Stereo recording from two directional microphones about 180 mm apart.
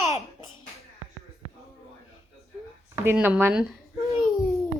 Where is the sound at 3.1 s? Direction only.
10° right (ahead or behind).